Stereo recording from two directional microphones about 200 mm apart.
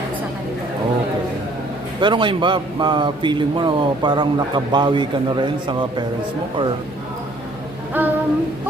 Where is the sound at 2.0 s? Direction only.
25° right (ahead or behind).